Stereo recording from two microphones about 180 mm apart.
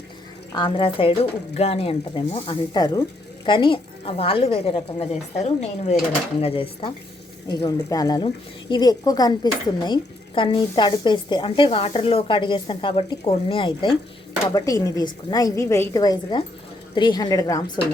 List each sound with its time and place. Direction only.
0.5 s a woman's voice: 30° left (ahead or behind)